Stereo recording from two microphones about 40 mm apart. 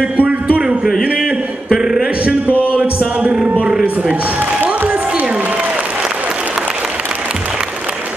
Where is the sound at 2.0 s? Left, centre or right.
Right.